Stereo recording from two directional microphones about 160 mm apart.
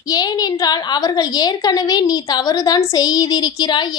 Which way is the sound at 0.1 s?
25° left (ahead or behind).